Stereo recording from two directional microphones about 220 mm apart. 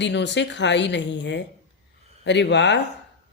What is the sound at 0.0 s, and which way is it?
Speech, 55° left (ahead or behind).